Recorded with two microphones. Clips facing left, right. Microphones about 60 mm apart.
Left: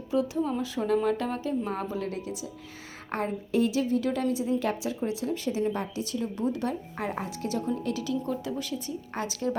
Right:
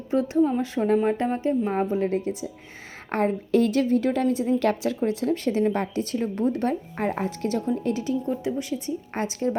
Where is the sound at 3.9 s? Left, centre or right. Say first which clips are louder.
Right 5 dB; right.